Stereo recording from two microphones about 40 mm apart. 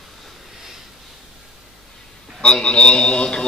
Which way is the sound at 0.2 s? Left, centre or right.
Centre.